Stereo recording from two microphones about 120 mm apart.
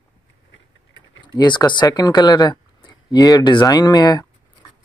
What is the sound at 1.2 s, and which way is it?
Speech, 40° left (ahead or behind).